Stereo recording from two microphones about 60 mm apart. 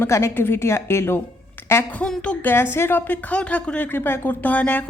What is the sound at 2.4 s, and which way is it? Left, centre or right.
Speech, left.